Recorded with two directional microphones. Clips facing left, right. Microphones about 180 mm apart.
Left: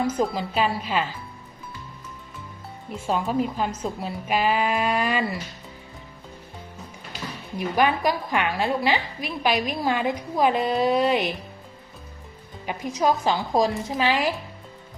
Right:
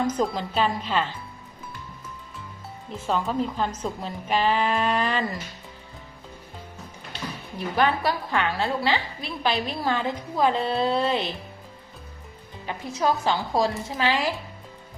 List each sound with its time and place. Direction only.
0.0 s a woman's voice: 10° left (ahead or behind)
2.9 s a woman's voice: 10° left (ahead or behind)
7.1 s a woman's voice: 15° left (ahead or behind)
12.6 s a woman's voice: 15° left (ahead or behind)